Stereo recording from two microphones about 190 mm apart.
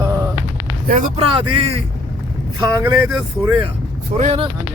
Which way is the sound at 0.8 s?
40° right (ahead or behind).